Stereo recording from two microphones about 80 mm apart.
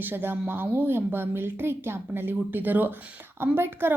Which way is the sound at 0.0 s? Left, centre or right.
Right.